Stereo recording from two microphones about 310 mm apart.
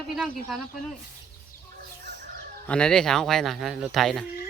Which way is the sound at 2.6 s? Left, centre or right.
Centre.